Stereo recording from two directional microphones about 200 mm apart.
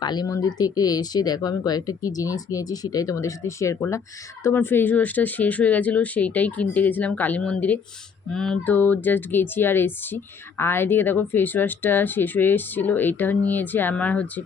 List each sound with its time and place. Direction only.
0.0 s speech: 20° left (ahead or behind)